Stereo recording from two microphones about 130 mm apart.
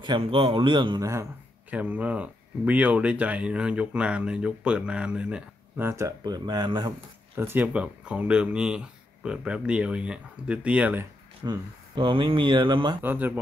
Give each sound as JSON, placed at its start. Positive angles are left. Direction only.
{"t": 0.0, "sound": "speech", "side_deg": -40}
{"t": 1.7, "sound": "speech", "side_deg": -10}
{"t": 5.9, "sound": "speech", "side_deg": -25}
{"t": 7.3, "sound": "speech", "side_deg": -15}
{"t": 11.4, "sound": "speech", "side_deg": -35}
{"t": 13.0, "sound": "speech", "side_deg": -15}